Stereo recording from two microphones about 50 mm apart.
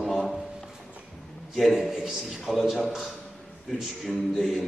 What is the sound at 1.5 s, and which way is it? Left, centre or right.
A man's voice, centre.